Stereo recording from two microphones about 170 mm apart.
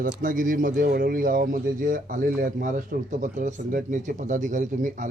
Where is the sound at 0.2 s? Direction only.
50° right (ahead or behind).